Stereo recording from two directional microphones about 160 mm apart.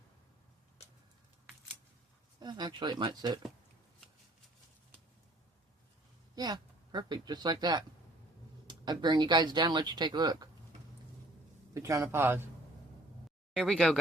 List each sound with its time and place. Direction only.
2.4 s speech: 25° right (ahead or behind)
6.3 s speech: 25° right (ahead or behind)
11.7 s speech: 20° right (ahead or behind)
13.6 s speech: 5° left (ahead or behind)